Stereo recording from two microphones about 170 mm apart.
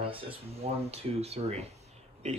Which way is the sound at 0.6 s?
35° right (ahead or behind).